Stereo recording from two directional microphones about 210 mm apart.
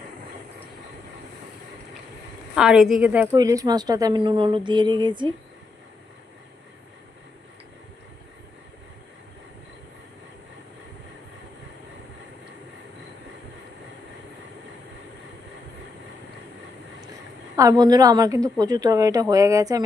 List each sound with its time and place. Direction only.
2.6 s a woman's voice: centre (ahead or behind); by 5.3 s 20° right (ahead or behind)
17.6 s a woman's voice: 20° right (ahead or behind)